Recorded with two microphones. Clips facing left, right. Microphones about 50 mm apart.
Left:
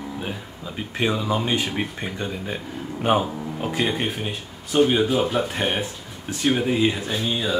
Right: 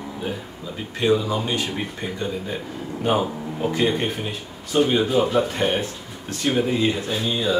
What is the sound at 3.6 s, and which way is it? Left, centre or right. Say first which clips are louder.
Speech: right 3 dB; centre.